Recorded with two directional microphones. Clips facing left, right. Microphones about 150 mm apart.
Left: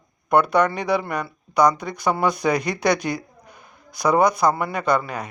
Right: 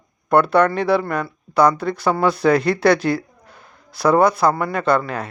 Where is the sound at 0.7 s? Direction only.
15° left (ahead or behind).